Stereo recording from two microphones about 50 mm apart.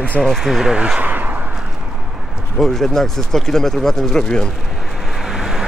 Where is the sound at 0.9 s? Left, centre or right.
Right.